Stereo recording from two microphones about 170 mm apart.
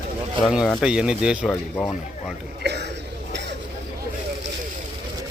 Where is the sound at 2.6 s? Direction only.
80° right.